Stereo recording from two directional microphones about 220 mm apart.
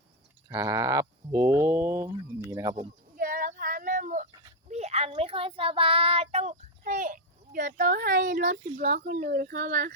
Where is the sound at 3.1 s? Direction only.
40° right (ahead or behind).